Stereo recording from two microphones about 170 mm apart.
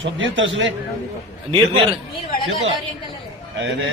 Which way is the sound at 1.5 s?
30° right (ahead or behind).